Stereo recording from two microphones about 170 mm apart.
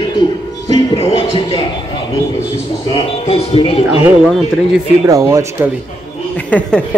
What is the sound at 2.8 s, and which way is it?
Speech, 35° left (ahead or behind).